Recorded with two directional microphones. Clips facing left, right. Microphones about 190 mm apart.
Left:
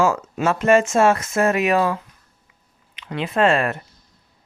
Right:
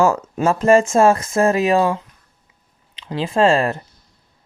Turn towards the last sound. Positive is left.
turn(degrees=-30)  # may be behind; listen again after turning